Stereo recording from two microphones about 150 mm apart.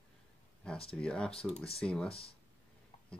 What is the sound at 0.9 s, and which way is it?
Speech, 5° left (ahead or behind).